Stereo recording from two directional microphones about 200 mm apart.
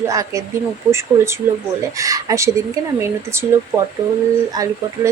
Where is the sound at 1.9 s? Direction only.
15° right (ahead or behind).